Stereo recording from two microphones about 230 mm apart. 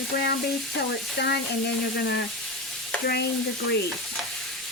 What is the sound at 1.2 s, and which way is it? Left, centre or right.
Speech, left.